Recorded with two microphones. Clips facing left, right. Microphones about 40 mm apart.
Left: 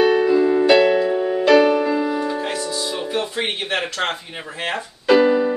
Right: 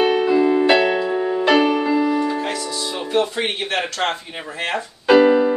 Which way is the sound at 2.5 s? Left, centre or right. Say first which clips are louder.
Left 1 dB; centre.